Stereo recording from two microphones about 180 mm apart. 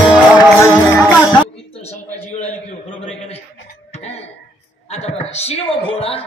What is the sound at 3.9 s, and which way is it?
Cough, 35° left (ahead or behind).